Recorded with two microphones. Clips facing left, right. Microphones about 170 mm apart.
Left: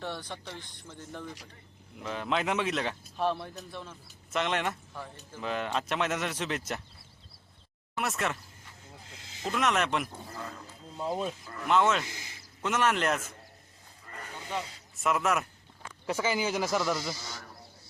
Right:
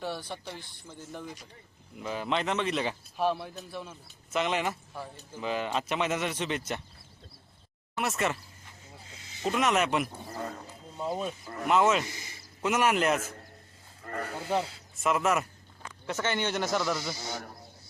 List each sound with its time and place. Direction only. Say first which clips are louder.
0.0 s speech: right 2 dB; 10° right (ahead or behind)
7.9 s speech: right 2 dB; centre (ahead or behind)
9.5 s speech: right 2 dB; centre (ahead or behind)
10.3 s speech: right 5 dB; 35° right (ahead or behind)
10.9 s speech: even; centre (ahead or behind)
14.0 s wild animals: right 10 dB; 60° right (ahead or behind)
14.3 s speech: right 6 dB; 35° right (ahead or behind)
14.9 s speech: right 1 dB; centre (ahead or behind)
17.2 s speech: right 7 dB; 50° right (ahead or behind)